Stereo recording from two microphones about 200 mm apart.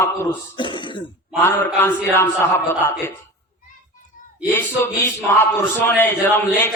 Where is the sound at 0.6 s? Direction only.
25° left (ahead or behind).